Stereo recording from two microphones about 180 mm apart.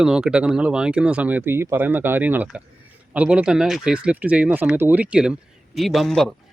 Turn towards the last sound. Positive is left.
turn(degrees=0)  # may be behind; listen again after turning